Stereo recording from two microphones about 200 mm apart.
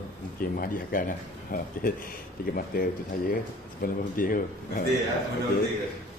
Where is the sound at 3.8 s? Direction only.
45° left (ahead or behind).